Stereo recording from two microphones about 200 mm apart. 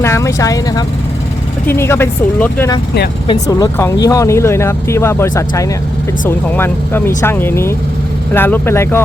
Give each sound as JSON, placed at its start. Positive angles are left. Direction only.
{"t": 0.0, "sound": "speech", "side_deg": 15}